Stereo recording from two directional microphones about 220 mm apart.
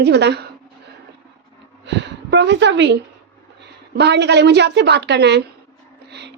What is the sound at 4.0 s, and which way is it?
A woman's voice, 50° right (ahead or behind).